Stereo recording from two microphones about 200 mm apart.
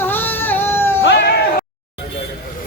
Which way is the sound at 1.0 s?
55° left (ahead or behind).